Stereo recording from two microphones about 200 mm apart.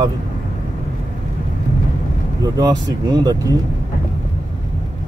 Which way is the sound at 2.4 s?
20° right (ahead or behind).